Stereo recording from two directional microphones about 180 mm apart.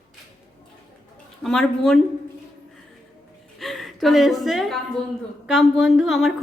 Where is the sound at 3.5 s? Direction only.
Centre (ahead or behind).